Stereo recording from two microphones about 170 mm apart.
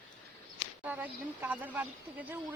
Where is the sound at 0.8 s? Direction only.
10° right (ahead or behind).